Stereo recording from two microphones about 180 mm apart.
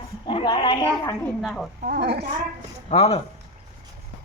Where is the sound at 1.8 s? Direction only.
60° right (ahead or behind).